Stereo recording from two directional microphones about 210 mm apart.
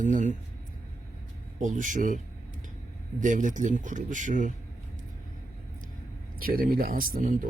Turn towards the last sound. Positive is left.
turn(degrees=-40)  # may be behind; listen again after turning